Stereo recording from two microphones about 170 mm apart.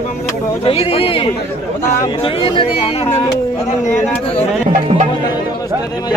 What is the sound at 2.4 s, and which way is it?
Speech, 30° left (ahead or behind).